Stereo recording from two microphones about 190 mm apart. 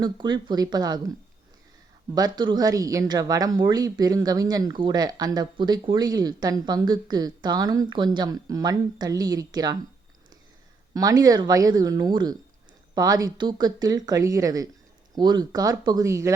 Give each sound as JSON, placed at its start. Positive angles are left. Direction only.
{"t": 0.0, "sound": "speech", "side_deg": -25}
{"t": 2.1, "sound": "speech", "side_deg": -20}
{"t": 10.9, "sound": "speech", "side_deg": -20}